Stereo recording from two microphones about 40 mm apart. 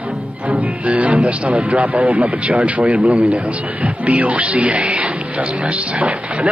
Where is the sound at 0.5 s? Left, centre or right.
Right.